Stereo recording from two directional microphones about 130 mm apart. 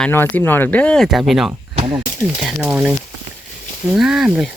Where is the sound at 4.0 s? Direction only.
5° right (ahead or behind).